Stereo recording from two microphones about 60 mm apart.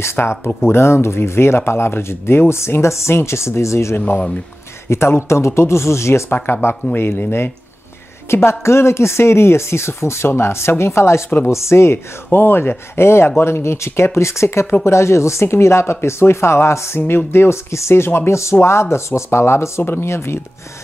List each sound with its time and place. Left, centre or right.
0.0 s speech: left